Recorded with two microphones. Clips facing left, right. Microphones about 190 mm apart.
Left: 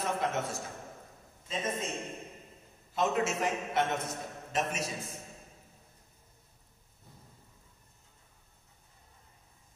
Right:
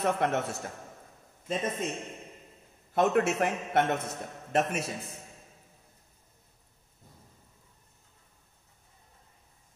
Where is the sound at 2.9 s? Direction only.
60° right (ahead or behind).